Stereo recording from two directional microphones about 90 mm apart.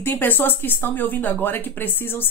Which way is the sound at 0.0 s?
20° left (ahead or behind).